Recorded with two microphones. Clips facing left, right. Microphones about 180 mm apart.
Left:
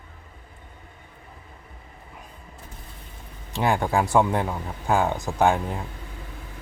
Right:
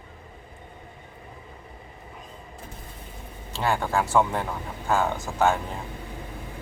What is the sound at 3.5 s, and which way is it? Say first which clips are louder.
Speech: left 3 dB; 15° left (ahead or behind).